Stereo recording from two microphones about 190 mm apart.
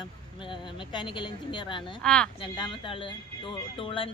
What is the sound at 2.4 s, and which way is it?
Speech, 25° left (ahead or behind).